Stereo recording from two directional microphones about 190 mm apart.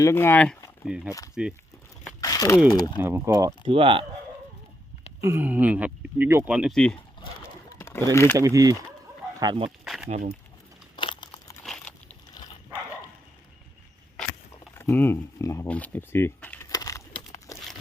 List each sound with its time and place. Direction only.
0.0 s speech: 10° left (ahead or behind)
0.9 s speech: 5° right (ahead or behind)
2.2 s a sound: 20° left (ahead or behind)
3.0 s speech: 15° right (ahead or behind)
3.7 s speech: 30° right (ahead or behind)
5.2 s speech: 10° right (ahead or behind)
7.8 s a sound: 15° left (ahead or behind)
8.1 s speech: 15° left (ahead or behind)
8.4 s speech: 15° right (ahead or behind)
9.6 s speech: centre (ahead or behind)
10.9 s crumpling: 25° left (ahead or behind)
11.6 s a sound: 5° left (ahead or behind)
14.8 s speech: 10° left (ahead or behind)